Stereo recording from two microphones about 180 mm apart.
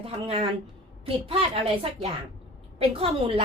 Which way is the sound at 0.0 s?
35° right (ahead or behind).